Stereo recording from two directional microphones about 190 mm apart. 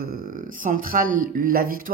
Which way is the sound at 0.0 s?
50° right (ahead or behind).